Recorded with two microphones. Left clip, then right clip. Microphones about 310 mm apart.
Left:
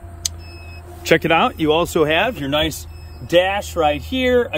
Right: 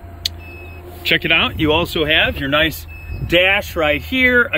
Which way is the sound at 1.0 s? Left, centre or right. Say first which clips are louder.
Even; centre.